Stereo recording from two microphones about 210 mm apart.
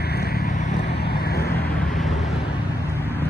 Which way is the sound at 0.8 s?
50° left (ahead or behind).